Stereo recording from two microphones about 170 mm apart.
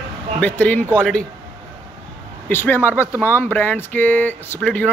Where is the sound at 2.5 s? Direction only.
15° left (ahead or behind).